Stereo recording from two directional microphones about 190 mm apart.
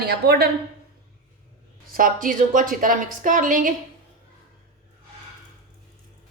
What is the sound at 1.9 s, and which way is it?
Speech, 45° right (ahead or behind).